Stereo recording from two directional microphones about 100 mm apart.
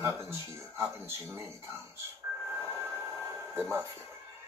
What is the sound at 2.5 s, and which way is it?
Train, 25° right (ahead or behind).